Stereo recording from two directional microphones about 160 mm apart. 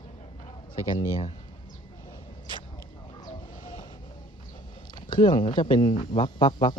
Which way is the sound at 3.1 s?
30° left (ahead or behind).